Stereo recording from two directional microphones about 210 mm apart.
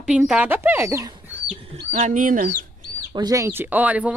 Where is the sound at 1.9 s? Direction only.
35° right (ahead or behind).